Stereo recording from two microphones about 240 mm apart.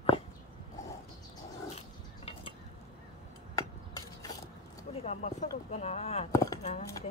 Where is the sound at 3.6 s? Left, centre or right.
Centre.